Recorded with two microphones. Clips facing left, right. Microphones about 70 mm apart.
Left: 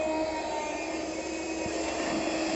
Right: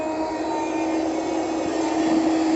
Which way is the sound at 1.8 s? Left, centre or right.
Right.